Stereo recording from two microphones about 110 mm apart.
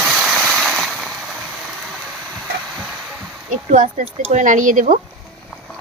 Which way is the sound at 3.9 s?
80° right.